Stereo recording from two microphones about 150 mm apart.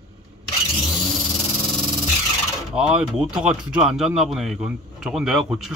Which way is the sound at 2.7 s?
5° right (ahead or behind).